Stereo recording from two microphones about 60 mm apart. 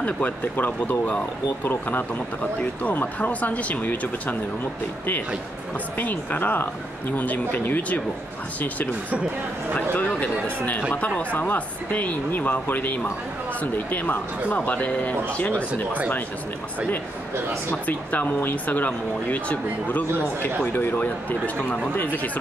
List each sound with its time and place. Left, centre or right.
0.0 s speech: left
5.9 s speech: left
9.9 s speech: left
15.7 s speech: right
17.8 s speech: left